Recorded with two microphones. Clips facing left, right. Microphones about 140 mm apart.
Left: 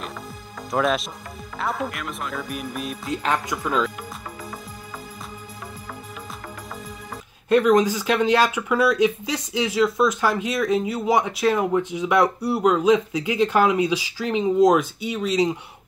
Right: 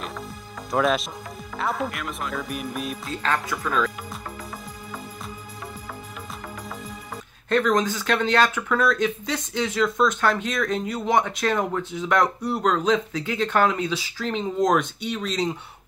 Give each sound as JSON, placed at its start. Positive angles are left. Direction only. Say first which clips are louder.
{"t": 0.7, "sound": "speech", "louder": "even", "side_deg": 0}
{"t": 3.1, "sound": "speech", "louder": "left 3 dB", "side_deg": 20}
{"t": 7.4, "sound": "speech", "louder": "left 4 dB", "side_deg": 10}